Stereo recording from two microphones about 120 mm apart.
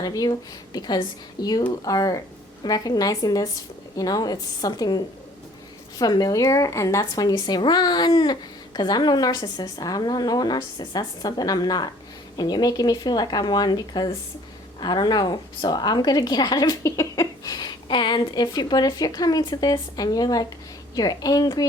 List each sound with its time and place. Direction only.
0.0 s speech: 30° left (ahead or behind)